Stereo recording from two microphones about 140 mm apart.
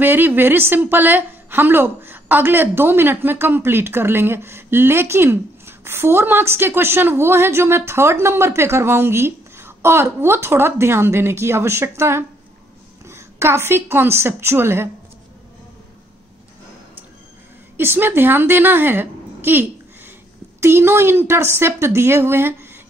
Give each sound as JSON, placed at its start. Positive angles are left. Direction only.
{"t": 0.0, "sound": "a woman's voice", "side_deg": -15}
{"t": 17.7, "sound": "a woman's voice", "side_deg": -15}
{"t": 20.6, "sound": "a woman's voice", "side_deg": -15}